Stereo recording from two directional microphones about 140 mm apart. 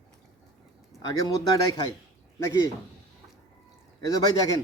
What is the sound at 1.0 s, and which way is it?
Speech, 25° left (ahead or behind).